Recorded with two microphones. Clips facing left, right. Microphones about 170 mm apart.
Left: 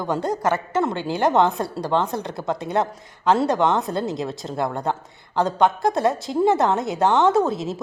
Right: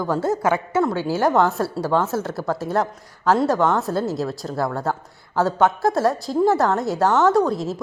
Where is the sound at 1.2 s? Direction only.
20° left (ahead or behind).